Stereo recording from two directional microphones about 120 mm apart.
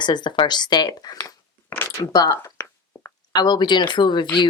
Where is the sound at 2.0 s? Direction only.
30° left (ahead or behind).